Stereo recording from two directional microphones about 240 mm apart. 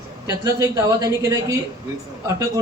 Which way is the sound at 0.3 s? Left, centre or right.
Centre.